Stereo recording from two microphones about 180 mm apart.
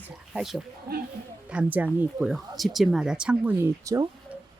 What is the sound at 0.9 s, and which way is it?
Speech, 55° right (ahead or behind).